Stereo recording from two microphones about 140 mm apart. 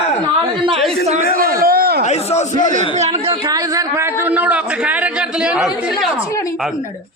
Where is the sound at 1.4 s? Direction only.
90° right.